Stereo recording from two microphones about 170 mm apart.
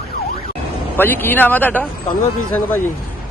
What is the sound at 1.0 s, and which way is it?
Speech, 10° left (ahead or behind).